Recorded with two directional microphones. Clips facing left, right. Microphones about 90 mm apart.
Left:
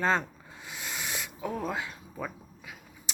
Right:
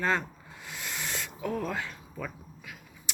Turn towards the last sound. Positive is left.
turn(degrees=20)  # may be behind; listen again after turning